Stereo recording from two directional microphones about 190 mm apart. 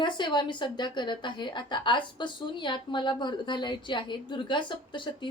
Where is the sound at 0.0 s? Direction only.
25° left (ahead or behind).